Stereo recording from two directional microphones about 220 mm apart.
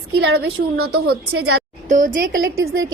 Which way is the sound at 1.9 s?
35° right (ahead or behind).